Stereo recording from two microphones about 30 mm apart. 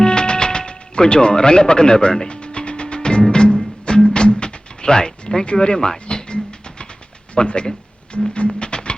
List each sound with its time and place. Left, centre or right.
0.0 s music: left
5.5 s speech: left
6.1 s a sound: left
7.3 s speech: left
8.5 s music: left